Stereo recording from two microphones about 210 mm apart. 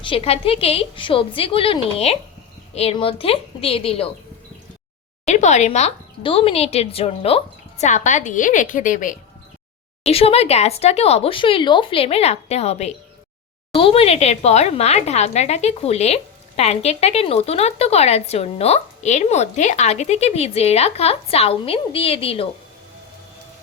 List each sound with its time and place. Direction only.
0.0 s speech: 25° left (ahead or behind)
5.2 s a woman's voice: 35° left (ahead or behind)